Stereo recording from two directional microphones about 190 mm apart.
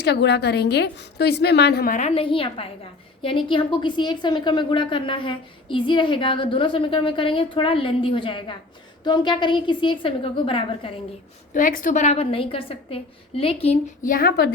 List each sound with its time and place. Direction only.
0.0 s a woman's voice: 60° left (ahead or behind)
2.0 s a woman's voice: 30° left (ahead or behind)
11.5 s a woman's voice: 45° left (ahead or behind)
14.0 s a woman's voice: 50° left (ahead or behind)